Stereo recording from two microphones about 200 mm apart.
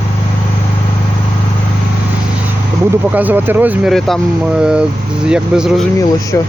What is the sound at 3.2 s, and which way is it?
Speech, 10° right (ahead or behind).